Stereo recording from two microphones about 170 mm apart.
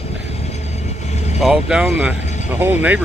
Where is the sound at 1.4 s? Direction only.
5° right (ahead or behind).